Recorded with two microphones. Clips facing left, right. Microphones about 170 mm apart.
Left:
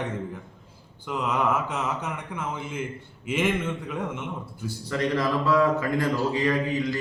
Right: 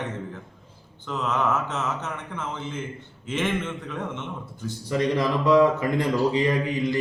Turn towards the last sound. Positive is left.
turn(degrees=-20)  # may be behind; listen again after turning